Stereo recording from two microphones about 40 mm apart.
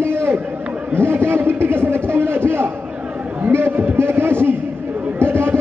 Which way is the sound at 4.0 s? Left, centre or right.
Right.